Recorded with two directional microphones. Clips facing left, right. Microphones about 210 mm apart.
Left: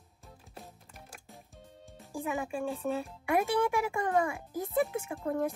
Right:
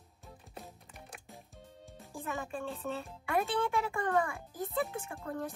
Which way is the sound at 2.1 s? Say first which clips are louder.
Left 5 dB; 15° left (ahead or behind).